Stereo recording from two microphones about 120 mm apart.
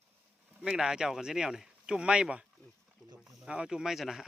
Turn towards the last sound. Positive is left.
turn(degrees=-5)  # may be behind; listen again after turning